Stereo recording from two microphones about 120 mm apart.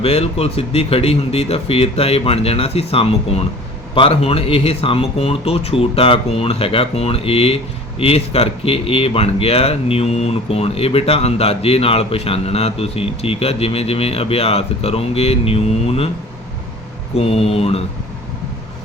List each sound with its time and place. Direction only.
0.0 s speech: 55° left (ahead or behind)
17.2 s speech: 55° left (ahead or behind)